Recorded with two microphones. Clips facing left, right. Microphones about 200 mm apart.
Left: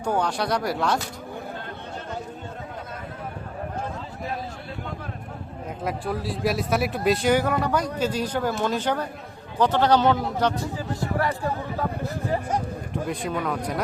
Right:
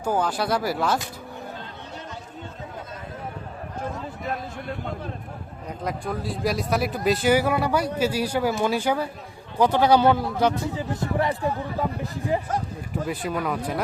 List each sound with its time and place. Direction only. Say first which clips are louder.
0.0 s speech: even; 5° right (ahead or behind)
5.8 s speech: left 1 dB; 5° left (ahead or behind); by 11.9 s 20° right (ahead or behind)
13.1 s speech: right 1 dB; 5° right (ahead or behind)